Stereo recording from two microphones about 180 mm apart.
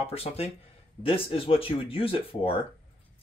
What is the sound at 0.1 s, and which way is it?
Speech, 35° left (ahead or behind).